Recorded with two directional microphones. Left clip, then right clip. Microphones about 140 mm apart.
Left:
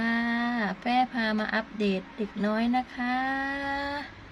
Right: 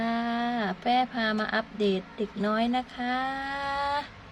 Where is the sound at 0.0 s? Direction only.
15° right (ahead or behind).